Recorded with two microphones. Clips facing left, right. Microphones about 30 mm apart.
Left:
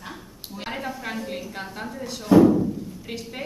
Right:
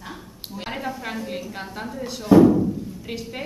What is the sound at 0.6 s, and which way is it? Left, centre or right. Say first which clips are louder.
A woman's voice: right 1 dB; centre.